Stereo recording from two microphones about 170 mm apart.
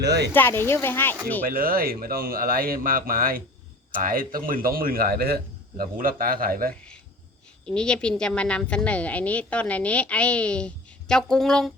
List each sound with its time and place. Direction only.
0.0 s speech: 75° right (ahead or behind)
0.3 s a woman's voice: 15° left (ahead or behind)
1.5 s speech: 60° right (ahead or behind)
7.7 s a woman's voice: 5° left (ahead or behind)